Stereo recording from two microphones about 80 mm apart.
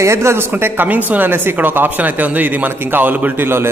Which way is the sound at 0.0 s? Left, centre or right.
Right.